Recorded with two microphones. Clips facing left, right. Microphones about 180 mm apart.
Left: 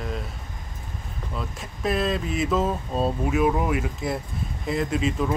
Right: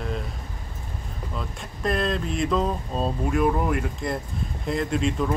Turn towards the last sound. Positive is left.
turn(degrees=0)  # may be behind; listen again after turning